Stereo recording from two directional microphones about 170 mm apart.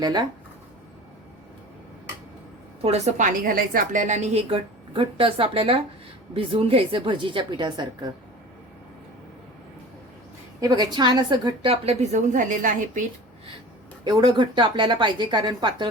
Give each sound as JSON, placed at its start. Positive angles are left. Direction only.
{"t": 0.0, "sound": "a woman's voice", "side_deg": -25}
{"t": 2.8, "sound": "a woman's voice", "side_deg": -40}
{"t": 10.6, "sound": "a woman's voice", "side_deg": -25}
{"t": 14.0, "sound": "a woman's voice", "side_deg": -25}